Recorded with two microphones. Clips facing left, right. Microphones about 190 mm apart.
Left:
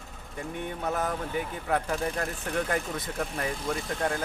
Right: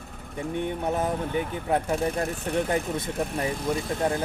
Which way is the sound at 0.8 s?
25° right (ahead or behind).